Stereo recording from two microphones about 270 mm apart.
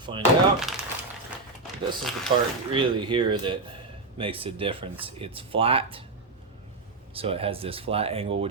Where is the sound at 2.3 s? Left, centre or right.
Right.